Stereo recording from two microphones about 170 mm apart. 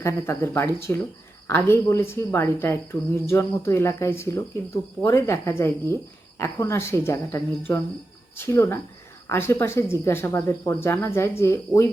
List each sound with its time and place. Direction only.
0.0 s speech: 15° left (ahead or behind)